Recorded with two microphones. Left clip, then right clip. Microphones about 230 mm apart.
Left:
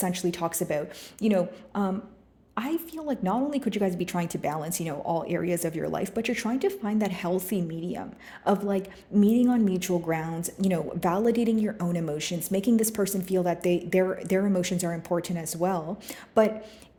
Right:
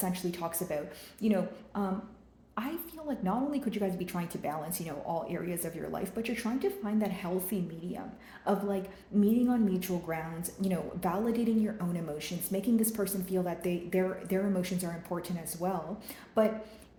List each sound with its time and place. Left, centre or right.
0.0 s a woman's voice: left